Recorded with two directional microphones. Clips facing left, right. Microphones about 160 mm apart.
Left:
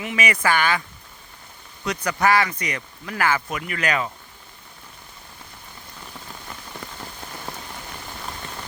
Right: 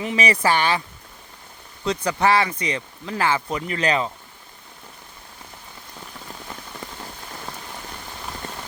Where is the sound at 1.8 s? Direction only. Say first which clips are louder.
Right 1 dB; 25° right (ahead or behind).